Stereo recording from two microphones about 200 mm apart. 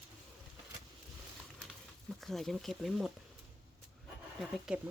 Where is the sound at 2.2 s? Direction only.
Centre (ahead or behind).